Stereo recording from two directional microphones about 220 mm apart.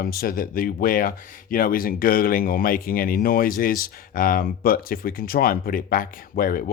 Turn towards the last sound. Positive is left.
turn(degrees=40)  # may be behind; listen again after turning